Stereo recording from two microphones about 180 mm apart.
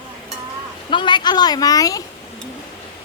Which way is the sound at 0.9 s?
25° left (ahead or behind).